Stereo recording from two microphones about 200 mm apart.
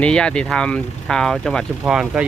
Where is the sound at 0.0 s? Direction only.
5° left (ahead or behind).